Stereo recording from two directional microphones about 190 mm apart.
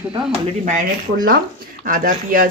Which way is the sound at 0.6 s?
45° right (ahead or behind).